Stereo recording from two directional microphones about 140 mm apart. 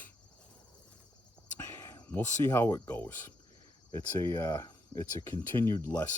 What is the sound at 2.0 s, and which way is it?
Speech, 15° left (ahead or behind).